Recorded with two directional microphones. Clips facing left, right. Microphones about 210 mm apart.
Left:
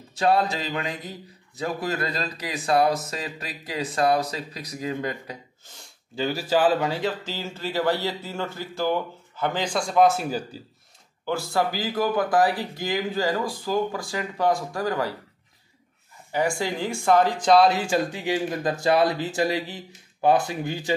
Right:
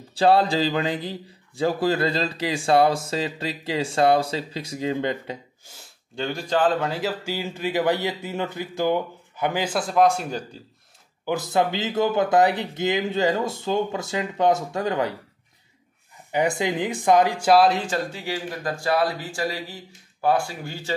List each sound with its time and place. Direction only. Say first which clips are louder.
0.1 s speech: right 4 dB; 30° right (ahead or behind)
5.7 s speech: even; centre (ahead or behind)
11.2 s speech: right 2 dB; 20° right (ahead or behind)
16.3 s speech: right 2 dB; 20° right (ahead or behind); by 17.8 s centre (ahead or behind)
17.8 s speech: left 3 dB; 15° left (ahead or behind)